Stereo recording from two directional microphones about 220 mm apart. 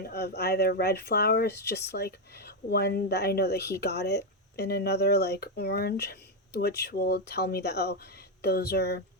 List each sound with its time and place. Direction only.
0.0 s speech: 45° left (ahead or behind)